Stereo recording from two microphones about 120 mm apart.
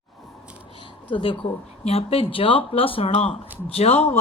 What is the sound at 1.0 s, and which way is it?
Speech, 45° left (ahead or behind).